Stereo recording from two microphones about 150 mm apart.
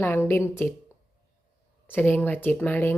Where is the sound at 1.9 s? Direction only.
15° left (ahead or behind).